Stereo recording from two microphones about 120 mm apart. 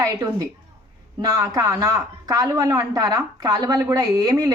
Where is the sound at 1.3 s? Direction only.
25° right (ahead or behind).